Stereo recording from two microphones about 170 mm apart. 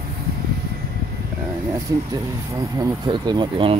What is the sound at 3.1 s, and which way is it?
Speech, 25° right (ahead or behind).